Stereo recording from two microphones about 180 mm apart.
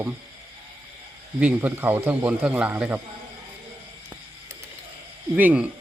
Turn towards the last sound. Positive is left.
turn(degrees=-10)  # may be behind; listen again after turning